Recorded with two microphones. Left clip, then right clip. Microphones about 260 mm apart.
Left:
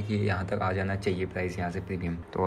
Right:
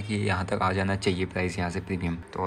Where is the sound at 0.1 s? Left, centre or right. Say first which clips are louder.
Right 2 dB; centre.